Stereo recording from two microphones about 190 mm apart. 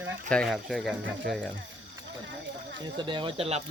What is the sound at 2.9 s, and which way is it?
Speech, 25° right (ahead or behind).